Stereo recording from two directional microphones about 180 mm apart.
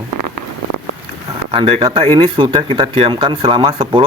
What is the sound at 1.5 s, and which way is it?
Speech, 30° right (ahead or behind).